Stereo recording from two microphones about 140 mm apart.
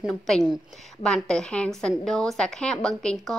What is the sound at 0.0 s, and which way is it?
A woman's voice, centre (ahead or behind).